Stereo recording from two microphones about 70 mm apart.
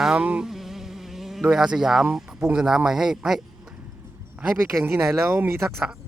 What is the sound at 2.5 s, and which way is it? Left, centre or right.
Speech, centre.